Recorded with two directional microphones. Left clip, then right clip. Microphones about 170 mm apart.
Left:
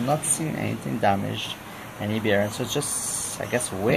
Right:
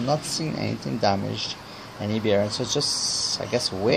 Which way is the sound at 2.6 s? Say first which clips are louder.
Right 3 dB; 60° right (ahead or behind).